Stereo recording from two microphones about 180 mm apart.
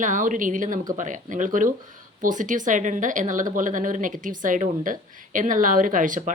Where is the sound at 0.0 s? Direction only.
45° right (ahead or behind).